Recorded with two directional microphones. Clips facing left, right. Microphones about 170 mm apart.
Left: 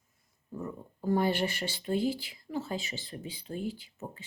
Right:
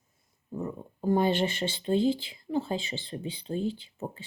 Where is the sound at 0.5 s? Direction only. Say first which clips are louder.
Right 4 dB; 20° right (ahead or behind).